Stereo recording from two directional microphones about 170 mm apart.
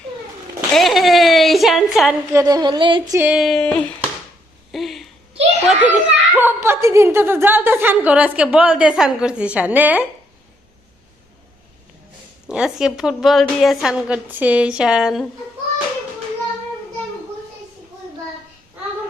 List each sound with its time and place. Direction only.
0.7 s a woman's voice: centre (ahead or behind)
2.3 s a sound: 20° right (ahead or behind)
3.2 s a woman's voice: 5° right (ahead or behind)
4.7 s a sound: centre (ahead or behind)
5.6 s a child's voice: 10° right (ahead or behind)
12.5 s a woman's voice: 5° right (ahead or behind)